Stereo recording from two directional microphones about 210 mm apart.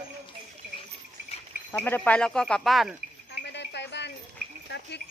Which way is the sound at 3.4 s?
55° left (ahead or behind).